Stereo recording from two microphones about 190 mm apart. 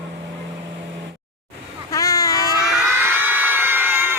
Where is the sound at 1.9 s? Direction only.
20° left (ahead or behind).